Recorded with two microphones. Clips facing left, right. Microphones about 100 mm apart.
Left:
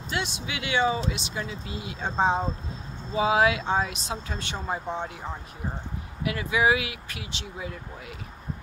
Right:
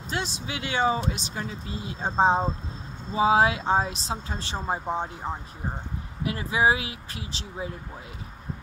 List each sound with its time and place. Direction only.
0.1 s speech: 35° right (ahead or behind)
6.2 s speech: 35° right (ahead or behind)